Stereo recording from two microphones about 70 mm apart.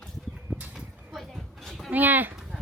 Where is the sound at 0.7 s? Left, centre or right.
Centre.